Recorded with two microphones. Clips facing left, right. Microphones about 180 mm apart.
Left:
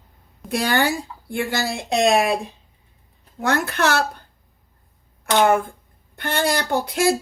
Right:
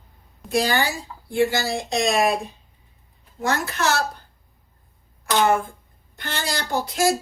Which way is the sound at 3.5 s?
60° left (ahead or behind).